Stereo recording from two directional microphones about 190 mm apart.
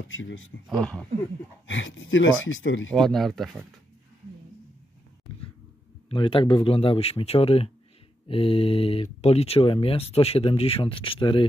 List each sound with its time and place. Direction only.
0.1 s speech: 90° left
0.7 s speech: 5° left (ahead or behind)
1.7 s speech: 85° left
2.9 s speech: centre (ahead or behind)
6.0 s speech: 25° left (ahead or behind)